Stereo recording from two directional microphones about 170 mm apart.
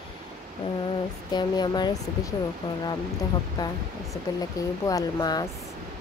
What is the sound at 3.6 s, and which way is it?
Speech, 20° left (ahead or behind).